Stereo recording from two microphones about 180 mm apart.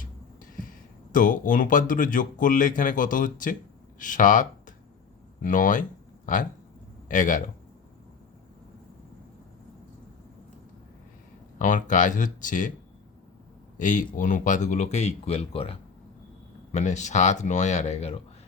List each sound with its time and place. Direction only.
1.1 s speech: 45° left (ahead or behind)
11.6 s speech: 45° left (ahead or behind)
13.7 s speech: 45° left (ahead or behind)